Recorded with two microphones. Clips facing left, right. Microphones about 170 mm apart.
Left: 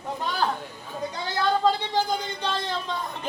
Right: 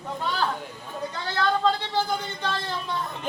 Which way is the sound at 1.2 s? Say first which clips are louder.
Left 1 dB; 15° left (ahead or behind).